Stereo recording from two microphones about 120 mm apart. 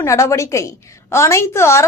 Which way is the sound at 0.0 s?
25° left (ahead or behind).